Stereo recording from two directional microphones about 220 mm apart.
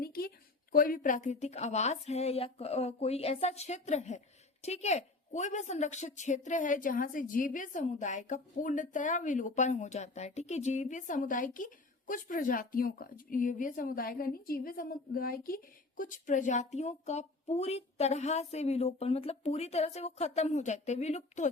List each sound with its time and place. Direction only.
0.0 s a woman's voice: 45° left (ahead or behind)